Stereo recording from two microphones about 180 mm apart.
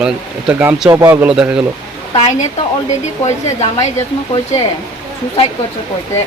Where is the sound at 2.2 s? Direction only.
35° left (ahead or behind).